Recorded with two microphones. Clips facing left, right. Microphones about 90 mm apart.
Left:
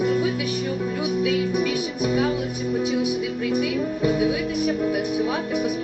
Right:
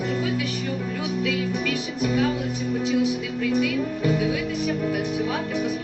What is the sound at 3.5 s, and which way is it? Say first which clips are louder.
Music: right 1 dB; 15° left (ahead or behind).